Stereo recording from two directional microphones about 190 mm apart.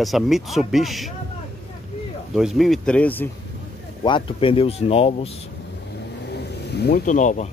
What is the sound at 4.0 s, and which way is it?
Speech, 25° left (ahead or behind).